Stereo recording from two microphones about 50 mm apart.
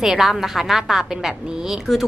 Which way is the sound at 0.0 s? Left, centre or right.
Centre.